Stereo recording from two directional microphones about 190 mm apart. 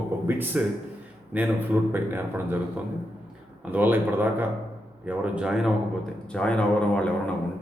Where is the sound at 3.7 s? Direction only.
10° right (ahead or behind); by 7.0 s 5° left (ahead or behind).